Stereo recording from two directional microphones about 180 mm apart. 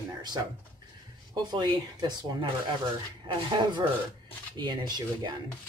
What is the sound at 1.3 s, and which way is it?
Speech, 25° right (ahead or behind).